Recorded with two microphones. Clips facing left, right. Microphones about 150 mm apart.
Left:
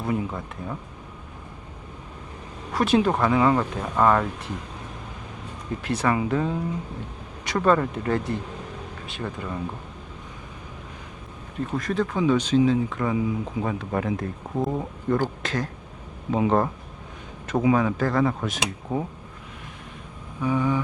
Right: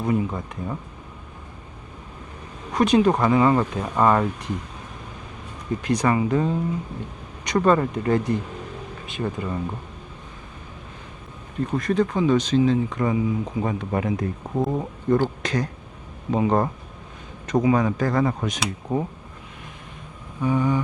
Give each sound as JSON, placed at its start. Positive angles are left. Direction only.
{"t": 0.0, "sound": "speech", "side_deg": 0}
{"t": 2.7, "sound": "speech", "side_deg": 5}
{"t": 5.8, "sound": "speech", "side_deg": 5}
{"t": 11.7, "sound": "speech", "side_deg": 0}
{"t": 20.4, "sound": "speech", "side_deg": 0}